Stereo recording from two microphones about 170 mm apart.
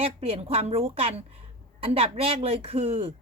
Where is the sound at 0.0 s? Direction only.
35° right (ahead or behind).